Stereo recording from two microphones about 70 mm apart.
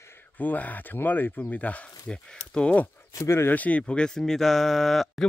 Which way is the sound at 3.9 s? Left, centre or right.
Centre.